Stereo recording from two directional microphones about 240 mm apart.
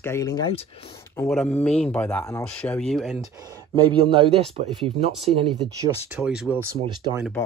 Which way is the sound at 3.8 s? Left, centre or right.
Right.